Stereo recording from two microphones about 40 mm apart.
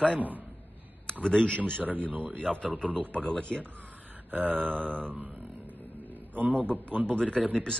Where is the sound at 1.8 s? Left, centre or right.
Right.